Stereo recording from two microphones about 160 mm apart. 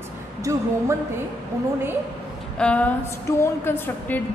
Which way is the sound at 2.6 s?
5° left (ahead or behind).